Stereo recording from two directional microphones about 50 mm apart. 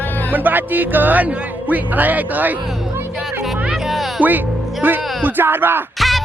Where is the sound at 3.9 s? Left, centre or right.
Centre.